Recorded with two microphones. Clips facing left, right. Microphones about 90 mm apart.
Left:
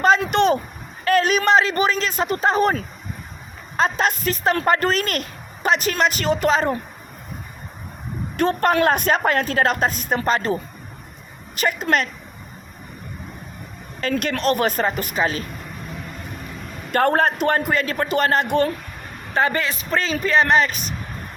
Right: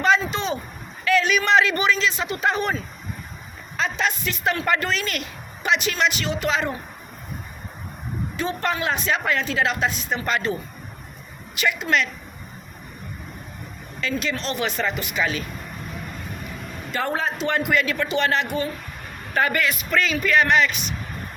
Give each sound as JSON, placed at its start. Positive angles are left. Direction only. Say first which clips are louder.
{"t": 0.2, "sound": "a sound", "louder": "left 8 dB", "side_deg": 60}
{"t": 1.0, "sound": "speech", "louder": "left 3 dB", "side_deg": 45}
{"t": 3.8, "sound": "speech", "louder": "left 4 dB", "side_deg": 45}
{"t": 8.4, "sound": "speech", "louder": "left 8 dB", "side_deg": 55}
{"t": 14.0, "sound": "speech", "louder": "left 5 dB", "side_deg": 55}
{"t": 16.9, "sound": "speech", "louder": "left 8 dB", "side_deg": 55}
{"t": 18.4, "sound": "speech", "louder": "left 7 dB", "side_deg": 65}
{"t": 19.3, "sound": "speech", "louder": "left 1 dB", "side_deg": 30}